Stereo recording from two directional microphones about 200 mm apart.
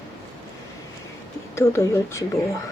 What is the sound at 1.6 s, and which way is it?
Speech, 15° left (ahead or behind).